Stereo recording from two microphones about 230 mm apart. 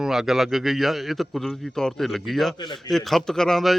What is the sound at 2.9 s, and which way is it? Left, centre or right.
Speech, centre.